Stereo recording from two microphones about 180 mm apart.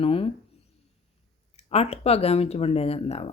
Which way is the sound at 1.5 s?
35° left (ahead or behind).